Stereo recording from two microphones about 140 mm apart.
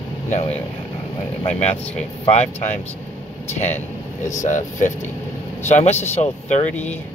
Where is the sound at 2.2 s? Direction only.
50° left (ahead or behind).